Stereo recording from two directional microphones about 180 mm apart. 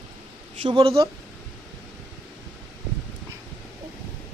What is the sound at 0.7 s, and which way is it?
Speech, 25° right (ahead or behind).